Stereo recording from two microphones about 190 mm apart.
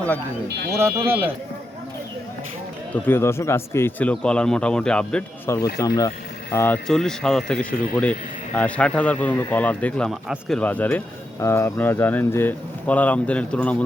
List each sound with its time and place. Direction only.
0.8 s speech: 15° right (ahead or behind)
2.9 s speech: 10° left (ahead or behind)
5.8 s speech: 20° left (ahead or behind)